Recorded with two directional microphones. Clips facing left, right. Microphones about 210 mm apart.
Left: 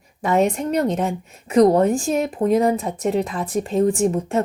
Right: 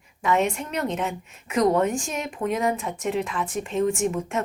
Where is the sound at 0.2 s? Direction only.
35° left (ahead or behind).